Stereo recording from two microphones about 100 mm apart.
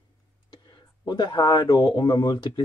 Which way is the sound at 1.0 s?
50° left (ahead or behind).